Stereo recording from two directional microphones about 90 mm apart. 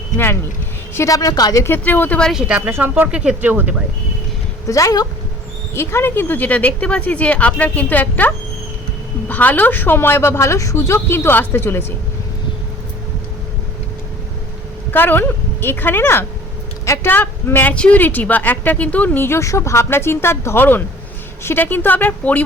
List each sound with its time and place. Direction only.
0.9 s a woman's voice: 40° left (ahead or behind)
1.6 s speech: 20° left (ahead or behind)
2.6 s speech: 25° right (ahead or behind)
4.6 s a woman's voice: 40° left (ahead or behind)
5.7 s speech: 30° left (ahead or behind)
9.3 s speech: 20° left (ahead or behind)
14.9 s speech: 20° left (ahead or behind)